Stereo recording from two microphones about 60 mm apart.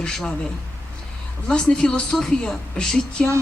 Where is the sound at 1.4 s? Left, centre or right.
Centre.